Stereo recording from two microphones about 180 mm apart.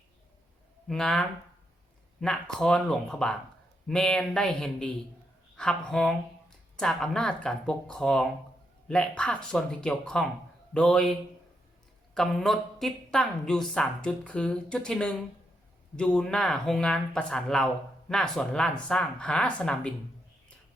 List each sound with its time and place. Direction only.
0.9 s speech: centre (ahead or behind)